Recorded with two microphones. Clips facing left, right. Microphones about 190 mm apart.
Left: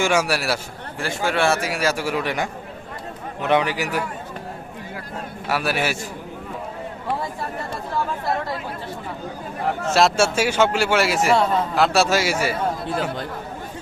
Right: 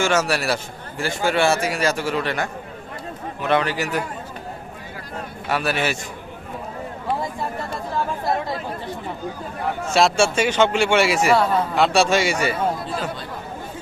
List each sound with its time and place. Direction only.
0.0 s a man's voice: 10° left (ahead or behind)
5.5 s a man's voice: 5° left (ahead or behind)
9.9 s a man's voice: centre (ahead or behind)
12.8 s speech: 55° left (ahead or behind)